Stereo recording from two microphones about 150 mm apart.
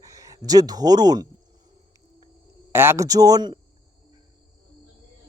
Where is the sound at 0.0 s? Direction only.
25° right (ahead or behind).